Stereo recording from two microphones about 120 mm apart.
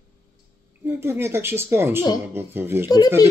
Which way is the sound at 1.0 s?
20° right (ahead or behind).